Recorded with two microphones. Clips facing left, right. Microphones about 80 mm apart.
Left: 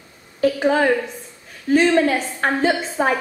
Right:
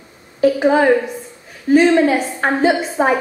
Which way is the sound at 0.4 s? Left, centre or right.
Centre.